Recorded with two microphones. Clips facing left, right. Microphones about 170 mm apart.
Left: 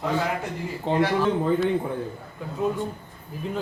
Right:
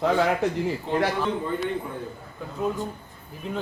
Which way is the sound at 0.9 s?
90° left.